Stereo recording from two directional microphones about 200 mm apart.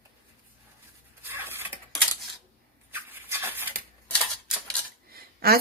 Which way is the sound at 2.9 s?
10° right (ahead or behind).